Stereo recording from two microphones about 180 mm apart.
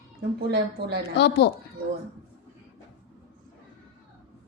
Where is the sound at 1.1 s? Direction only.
70° left (ahead or behind).